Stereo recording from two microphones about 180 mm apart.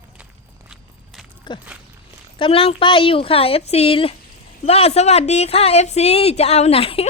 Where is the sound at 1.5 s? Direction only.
25° left (ahead or behind).